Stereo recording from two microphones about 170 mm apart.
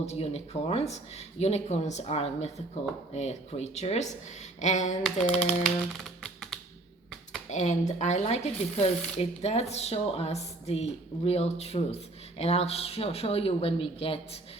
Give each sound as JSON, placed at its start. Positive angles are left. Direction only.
{"t": 0.0, "sound": "speech", "side_deg": 40}
{"t": 5.0, "sound": "typing", "side_deg": 5}
{"t": 7.5, "sound": "speech", "side_deg": 45}